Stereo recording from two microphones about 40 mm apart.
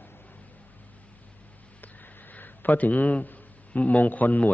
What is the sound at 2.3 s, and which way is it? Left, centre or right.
A man's voice, left.